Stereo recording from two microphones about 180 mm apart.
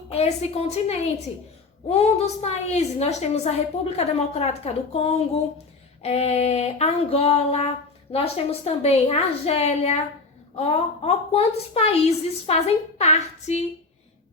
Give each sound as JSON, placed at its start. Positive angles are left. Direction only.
{"t": 0.1, "sound": "a woman's voice", "side_deg": 35}